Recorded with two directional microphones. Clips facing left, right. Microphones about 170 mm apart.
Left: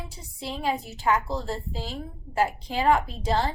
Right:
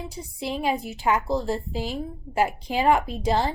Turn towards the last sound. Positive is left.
turn(degrees=-15)  # may be behind; listen again after turning